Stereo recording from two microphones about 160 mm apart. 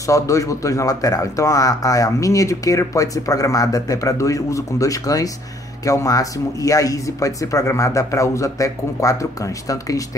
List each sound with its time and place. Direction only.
0.0 s speech: 20° left (ahead or behind)